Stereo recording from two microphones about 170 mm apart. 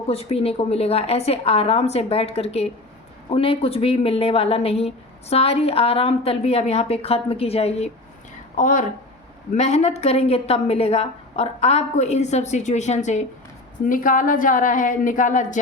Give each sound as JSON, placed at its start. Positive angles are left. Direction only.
{"t": 0.1, "sound": "speech", "side_deg": 35}
{"t": 8.5, "sound": "a woman's voice", "side_deg": 50}